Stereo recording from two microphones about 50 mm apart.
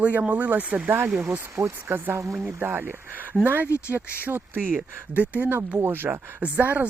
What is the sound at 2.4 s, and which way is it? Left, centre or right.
Speech, right.